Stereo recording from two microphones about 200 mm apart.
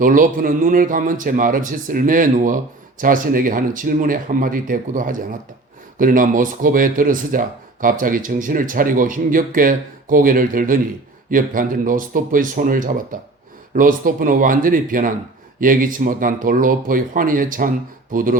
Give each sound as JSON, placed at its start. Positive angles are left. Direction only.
{"t": 0.0, "sound": "speech", "side_deg": -40}